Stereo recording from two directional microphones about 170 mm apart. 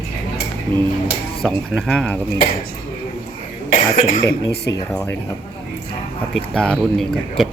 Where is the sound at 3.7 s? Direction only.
50° left (ahead or behind).